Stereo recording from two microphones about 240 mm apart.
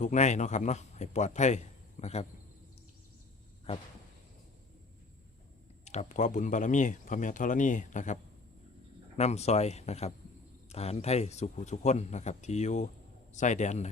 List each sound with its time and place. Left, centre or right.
0.0 s speech: left
5.8 s speech: left